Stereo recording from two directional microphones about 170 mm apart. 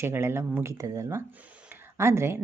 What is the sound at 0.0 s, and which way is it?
Speech, 15° right (ahead or behind).